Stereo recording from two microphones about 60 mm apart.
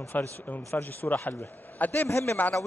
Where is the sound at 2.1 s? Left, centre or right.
Left.